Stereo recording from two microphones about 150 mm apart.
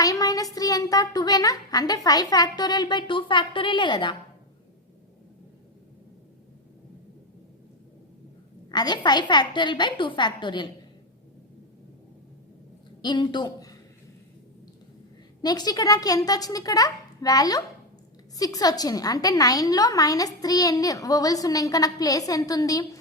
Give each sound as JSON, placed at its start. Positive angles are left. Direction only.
{"t": 0.0, "sound": "a woman's voice", "side_deg": 25}
{"t": 8.7, "sound": "a woman's voice", "side_deg": 30}
{"t": 13.0, "sound": "speech", "side_deg": 30}
{"t": 15.4, "sound": "a woman's voice", "side_deg": 25}